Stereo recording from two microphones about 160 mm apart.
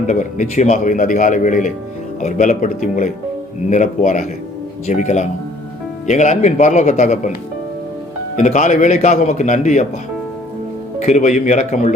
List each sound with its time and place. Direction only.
0.1 s speech: 50° left (ahead or behind)
8.4 s speech: 50° left (ahead or behind)
11.0 s speech: 45° left (ahead or behind)